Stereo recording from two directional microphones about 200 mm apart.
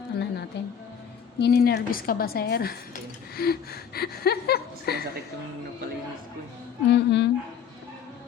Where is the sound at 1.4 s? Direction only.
55° left (ahead or behind).